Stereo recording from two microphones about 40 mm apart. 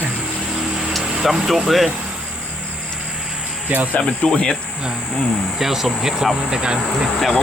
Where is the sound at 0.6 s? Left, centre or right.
Right.